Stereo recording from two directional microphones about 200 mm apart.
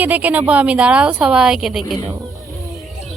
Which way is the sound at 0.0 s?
10° right (ahead or behind).